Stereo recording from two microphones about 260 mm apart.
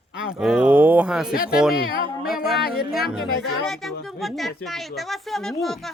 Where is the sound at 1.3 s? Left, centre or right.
Left.